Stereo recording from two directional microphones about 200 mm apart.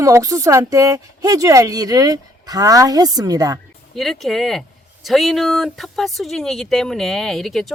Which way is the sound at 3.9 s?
Centre (ahead or behind).